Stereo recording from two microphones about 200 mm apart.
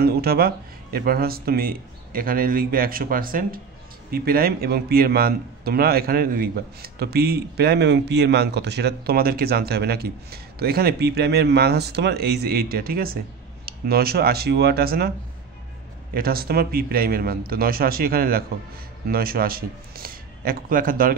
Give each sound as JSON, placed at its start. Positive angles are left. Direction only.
{"t": 0.0, "sound": "a man's voice", "side_deg": -50}